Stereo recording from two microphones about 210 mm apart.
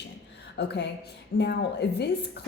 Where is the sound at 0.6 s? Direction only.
55° left (ahead or behind).